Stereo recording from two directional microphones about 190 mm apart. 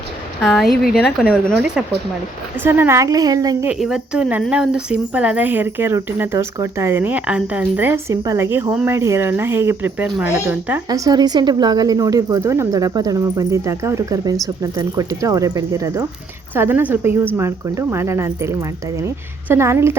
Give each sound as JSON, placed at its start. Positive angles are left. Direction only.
{"t": 0.4, "sound": "speech", "side_deg": 0}
{"t": 2.6, "sound": "speech", "side_deg": -10}
{"t": 3.7, "sound": "a woman's voice", "side_deg": -5}